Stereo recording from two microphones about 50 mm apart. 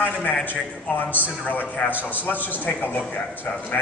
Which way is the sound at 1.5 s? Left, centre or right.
Left.